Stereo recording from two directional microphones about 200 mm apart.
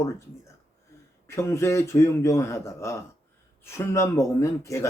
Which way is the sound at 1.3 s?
15° left (ahead or behind).